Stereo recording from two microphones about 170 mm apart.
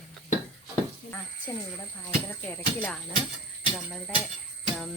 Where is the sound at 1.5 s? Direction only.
15° left (ahead or behind).